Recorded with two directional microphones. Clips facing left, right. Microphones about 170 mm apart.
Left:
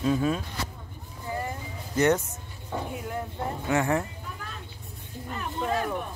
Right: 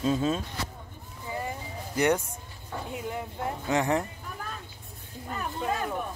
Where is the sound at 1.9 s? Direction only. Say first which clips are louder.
Left 2 dB; 10° right (ahead or behind).